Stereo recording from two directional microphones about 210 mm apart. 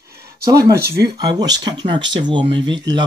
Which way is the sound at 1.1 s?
20° right (ahead or behind).